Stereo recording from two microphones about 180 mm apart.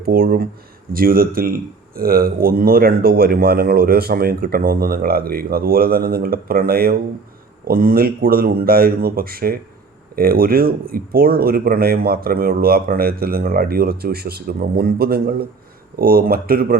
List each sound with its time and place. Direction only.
0.0 s speech: 55° right (ahead or behind)